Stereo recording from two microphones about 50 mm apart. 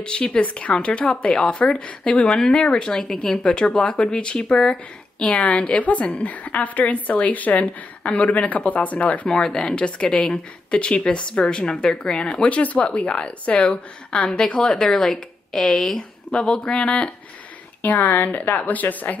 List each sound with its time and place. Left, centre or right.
0.0 s a woman's voice: centre
9.3 s a woman's voice: centre
17.8 s a woman's voice: left